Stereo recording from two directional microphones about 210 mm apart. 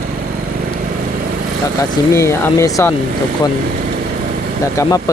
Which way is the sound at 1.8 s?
15° left (ahead or behind).